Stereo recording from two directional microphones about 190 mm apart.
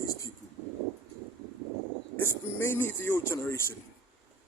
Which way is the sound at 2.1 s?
10° left (ahead or behind).